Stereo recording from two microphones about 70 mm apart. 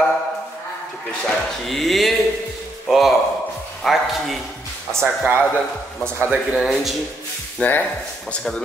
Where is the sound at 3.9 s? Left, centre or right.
Centre.